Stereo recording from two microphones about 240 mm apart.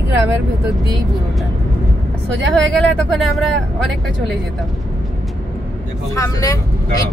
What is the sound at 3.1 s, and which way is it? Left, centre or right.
Speech, centre.